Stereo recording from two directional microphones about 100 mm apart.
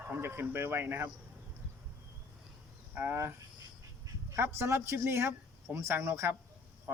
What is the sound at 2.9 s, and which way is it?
Speech, 20° right (ahead or behind).